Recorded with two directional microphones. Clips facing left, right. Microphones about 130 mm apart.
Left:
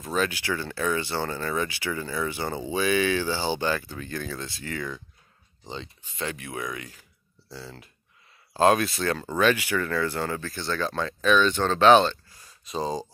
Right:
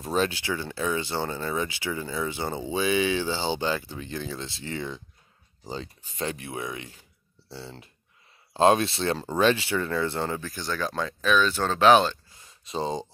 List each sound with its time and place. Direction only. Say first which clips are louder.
0.0 s speech: right 1 dB; 35° right (ahead or behind)
5.7 s speech: right 2 dB; 35° right (ahead or behind); by 12.2 s 5° right (ahead or behind)
12.4 s a sound: even; 25° right (ahead or behind)